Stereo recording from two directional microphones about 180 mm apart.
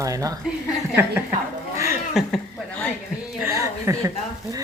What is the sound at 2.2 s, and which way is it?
Speech, centre (ahead or behind).